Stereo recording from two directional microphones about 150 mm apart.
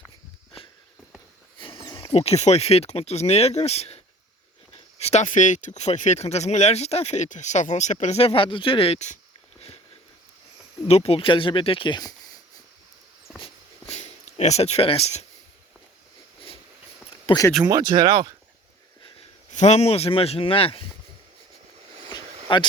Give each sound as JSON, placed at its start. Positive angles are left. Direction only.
{"t": 1.5, "sound": "a sound", "side_deg": 35}
{"t": 2.1, "sound": "speech", "side_deg": 45}
{"t": 10.8, "sound": "speech", "side_deg": 40}
{"t": 13.4, "sound": "a sound", "side_deg": 45}
{"t": 17.7, "sound": "speech", "side_deg": -25}
{"t": 19.5, "sound": "speech", "side_deg": 50}
{"t": 22.5, "sound": "speech", "side_deg": 35}